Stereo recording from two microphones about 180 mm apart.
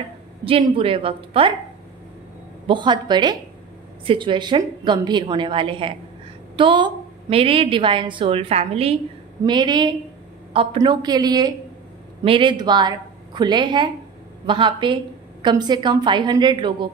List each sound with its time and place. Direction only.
0.5 s a woman's voice: 30° right (ahead or behind)
2.6 s a woman's voice: 25° right (ahead or behind)